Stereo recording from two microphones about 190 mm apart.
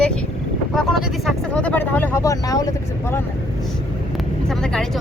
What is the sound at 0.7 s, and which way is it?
Speech, centre (ahead or behind).